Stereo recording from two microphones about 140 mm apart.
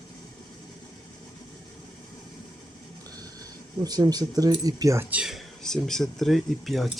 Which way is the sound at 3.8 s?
25° right (ahead or behind).